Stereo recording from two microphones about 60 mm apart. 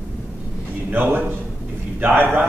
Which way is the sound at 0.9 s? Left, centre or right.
Right.